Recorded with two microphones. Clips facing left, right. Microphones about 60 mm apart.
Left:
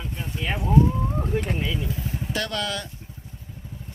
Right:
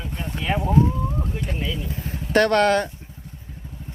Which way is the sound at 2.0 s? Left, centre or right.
Right.